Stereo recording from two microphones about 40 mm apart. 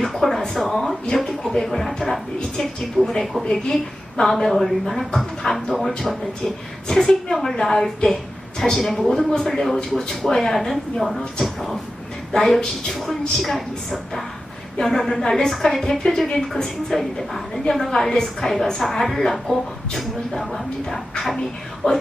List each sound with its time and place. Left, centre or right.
0.0 s speech: centre
3.0 s speech: right
3.3 s speech: centre
3.7 s speech: centre
21.8 s speech: left